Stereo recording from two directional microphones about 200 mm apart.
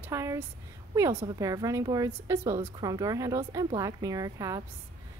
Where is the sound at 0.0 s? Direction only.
15° right (ahead or behind).